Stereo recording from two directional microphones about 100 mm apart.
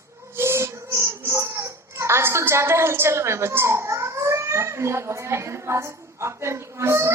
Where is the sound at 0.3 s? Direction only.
25° right (ahead or behind).